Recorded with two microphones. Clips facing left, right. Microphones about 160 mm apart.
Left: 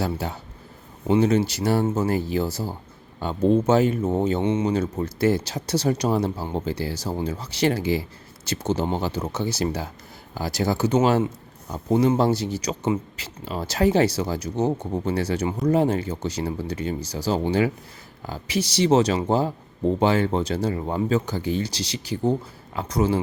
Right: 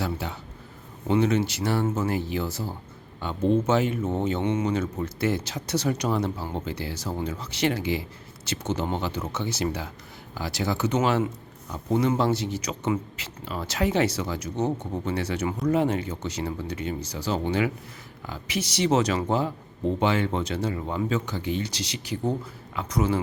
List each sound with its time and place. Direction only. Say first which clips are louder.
0.0 s a man's voice: left 3 dB; 40° left (ahead or behind)